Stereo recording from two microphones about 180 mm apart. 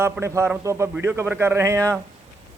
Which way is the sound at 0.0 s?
15° right (ahead or behind).